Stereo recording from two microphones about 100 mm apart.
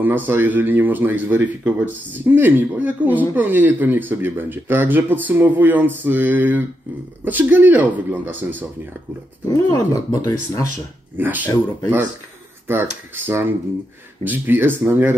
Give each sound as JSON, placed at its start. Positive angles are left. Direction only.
{"t": 0.0, "sound": "speech", "side_deg": -20}
{"t": 9.7, "sound": "speech", "side_deg": 35}
{"t": 11.1, "sound": "speech", "side_deg": -20}
{"t": 12.6, "sound": "speech", "side_deg": -20}